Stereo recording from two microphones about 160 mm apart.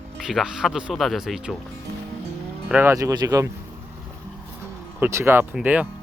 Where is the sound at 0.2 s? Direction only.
5° right (ahead or behind).